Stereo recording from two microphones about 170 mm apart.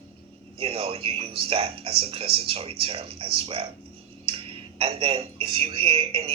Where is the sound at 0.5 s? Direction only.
35° right (ahead or behind).